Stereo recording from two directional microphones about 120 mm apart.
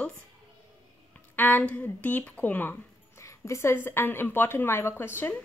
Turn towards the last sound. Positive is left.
turn(degrees=20)  # may be behind; listen again after turning